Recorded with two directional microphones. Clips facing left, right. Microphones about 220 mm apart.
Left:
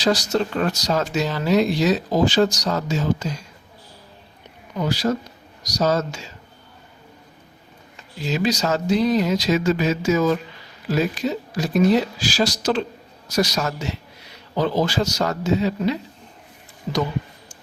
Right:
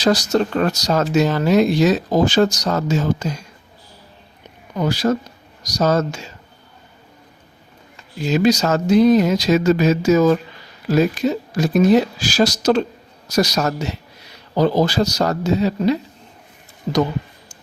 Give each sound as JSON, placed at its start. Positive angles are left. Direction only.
{"t": 0.0, "sound": "speech", "side_deg": -45}
{"t": 4.8, "sound": "speech", "side_deg": -50}
{"t": 8.2, "sound": "speech", "side_deg": -45}